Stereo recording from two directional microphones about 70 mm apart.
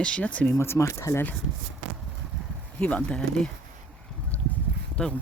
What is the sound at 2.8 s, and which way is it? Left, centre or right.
Speech, centre.